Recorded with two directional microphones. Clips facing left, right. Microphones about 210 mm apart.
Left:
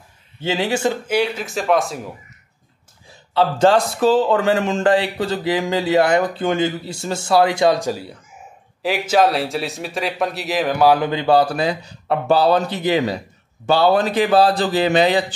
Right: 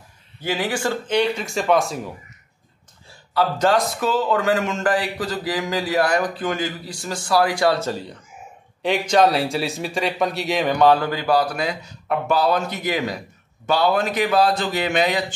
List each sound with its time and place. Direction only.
0.4 s speech: 25° left (ahead or behind)
1.0 s speech: 5° left (ahead or behind)
3.1 s speech: 25° left (ahead or behind); by 11.0 s 5° left (ahead or behind)
11.0 s a man's voice: 25° left (ahead or behind)